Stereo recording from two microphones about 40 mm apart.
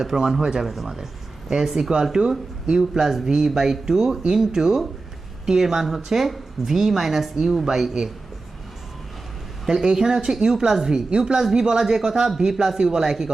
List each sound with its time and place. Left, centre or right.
0.0 s speech: centre
2.2 s speech: right
2.6 s speech: centre
9.6 s speech: centre